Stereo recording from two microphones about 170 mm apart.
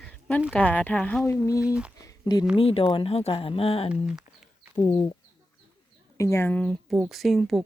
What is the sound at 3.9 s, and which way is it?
Speech, 5° right (ahead or behind).